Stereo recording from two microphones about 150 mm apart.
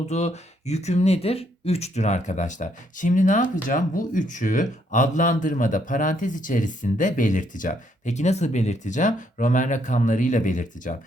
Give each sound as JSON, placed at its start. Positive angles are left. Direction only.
{"t": 0.1, "sound": "speech", "side_deg": 50}